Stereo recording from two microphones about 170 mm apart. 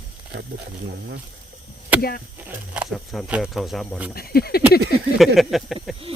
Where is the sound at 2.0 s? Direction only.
65° left (ahead or behind).